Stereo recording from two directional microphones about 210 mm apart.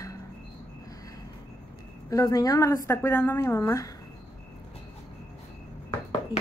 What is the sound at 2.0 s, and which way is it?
A woman's voice, 15° left (ahead or behind).